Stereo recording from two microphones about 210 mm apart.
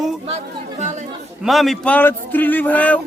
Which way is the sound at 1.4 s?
Centre (ahead or behind).